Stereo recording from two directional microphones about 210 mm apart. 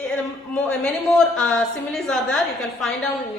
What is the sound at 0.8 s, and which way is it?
A woman's voice, 5° left (ahead or behind).